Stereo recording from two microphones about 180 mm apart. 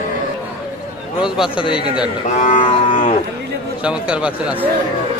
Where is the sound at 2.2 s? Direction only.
45° left (ahead or behind).